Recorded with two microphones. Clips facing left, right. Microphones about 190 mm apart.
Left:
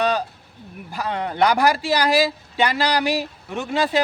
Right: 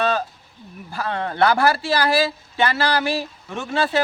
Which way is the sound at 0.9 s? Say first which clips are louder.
Even; 15° left (ahead or behind).